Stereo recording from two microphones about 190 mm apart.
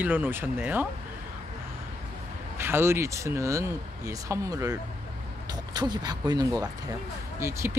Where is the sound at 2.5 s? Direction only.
15° right (ahead or behind).